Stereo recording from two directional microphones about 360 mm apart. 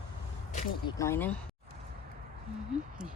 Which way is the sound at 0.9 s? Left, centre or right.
Centre.